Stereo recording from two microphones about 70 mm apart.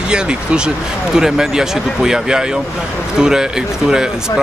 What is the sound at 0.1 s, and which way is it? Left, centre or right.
Speech, centre.